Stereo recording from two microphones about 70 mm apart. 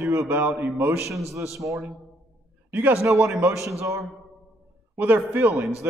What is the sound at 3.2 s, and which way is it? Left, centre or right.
Speech, right.